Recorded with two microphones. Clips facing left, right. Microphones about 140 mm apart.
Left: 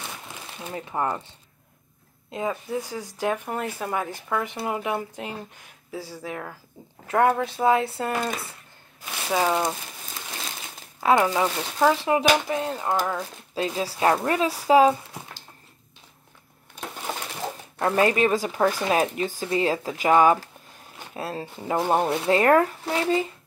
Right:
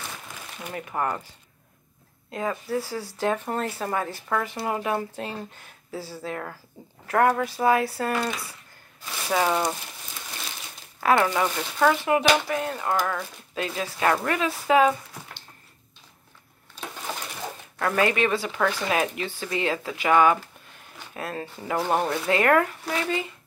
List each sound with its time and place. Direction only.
0.6 s speech: 25° left (ahead or behind)
2.3 s speech: 20° left (ahead or behind)
9.0 s speech: 10° left (ahead or behind)
11.0 s a sound: 20° left (ahead or behind)
11.3 s speech: 10° left (ahead or behind)
11.9 s speech: 30° left (ahead or behind)
17.4 s a sound: 25° left (ahead or behind)
18.9 s speech: 35° left (ahead or behind)